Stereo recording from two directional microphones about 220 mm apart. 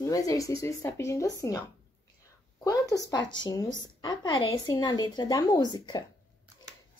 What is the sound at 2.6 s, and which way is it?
A woman's voice, 15° left (ahead or behind).